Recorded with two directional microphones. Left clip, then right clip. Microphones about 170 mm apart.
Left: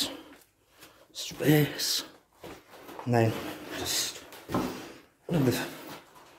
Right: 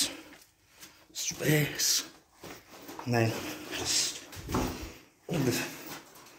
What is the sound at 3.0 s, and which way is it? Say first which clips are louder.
Speech: left 3 dB; 25° left (ahead or behind).